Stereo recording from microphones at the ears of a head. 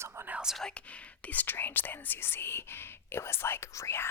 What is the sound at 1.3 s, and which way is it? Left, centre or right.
Speech, left.